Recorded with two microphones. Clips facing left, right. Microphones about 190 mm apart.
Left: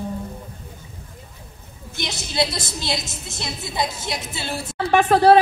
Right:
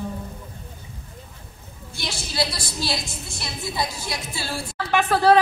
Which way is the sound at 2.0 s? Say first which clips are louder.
Left 3 dB; 20° left (ahead or behind).